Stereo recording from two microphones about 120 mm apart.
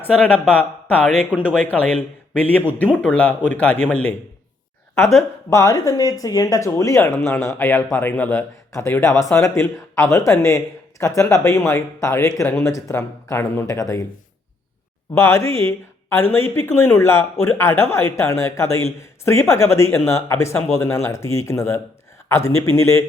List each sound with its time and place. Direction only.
0.0 s speech: 15° left (ahead or behind)
1.1 s speech: 10° right (ahead or behind)
1.5 s speech: 15° left (ahead or behind)
4.9 s speech: 25° left (ahead or behind)
15.1 s speech: 20° left (ahead or behind)